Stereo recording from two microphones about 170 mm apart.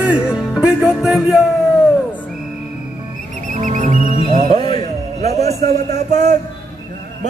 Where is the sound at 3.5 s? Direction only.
45° right (ahead or behind).